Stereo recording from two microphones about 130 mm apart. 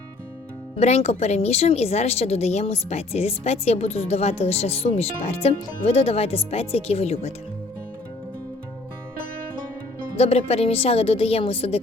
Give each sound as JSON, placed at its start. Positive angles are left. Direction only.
{"t": 0.8, "sound": "a woman's voice", "side_deg": 55}
{"t": 10.2, "sound": "a woman's voice", "side_deg": 50}